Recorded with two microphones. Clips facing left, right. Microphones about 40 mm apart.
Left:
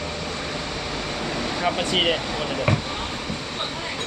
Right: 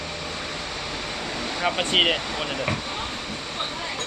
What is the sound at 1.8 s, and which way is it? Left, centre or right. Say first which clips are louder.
Speech: right 3 dB; right.